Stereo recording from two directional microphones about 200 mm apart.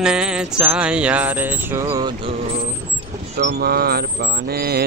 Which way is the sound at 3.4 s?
50° right (ahead or behind).